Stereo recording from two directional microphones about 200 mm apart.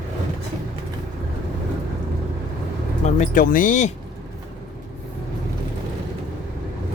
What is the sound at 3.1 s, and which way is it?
Speech, 40° left (ahead or behind).